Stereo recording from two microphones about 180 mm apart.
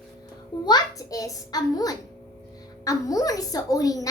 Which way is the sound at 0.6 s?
20° left (ahead or behind).